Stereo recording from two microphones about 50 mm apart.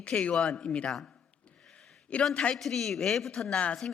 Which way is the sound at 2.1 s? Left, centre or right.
Left.